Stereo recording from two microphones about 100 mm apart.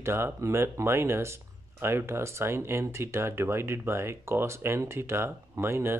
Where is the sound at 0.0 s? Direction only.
25° right (ahead or behind).